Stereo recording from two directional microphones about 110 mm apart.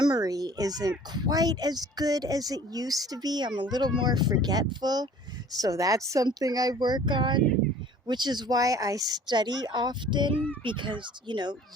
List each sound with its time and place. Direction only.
0.0 s speech: 35° right (ahead or behind)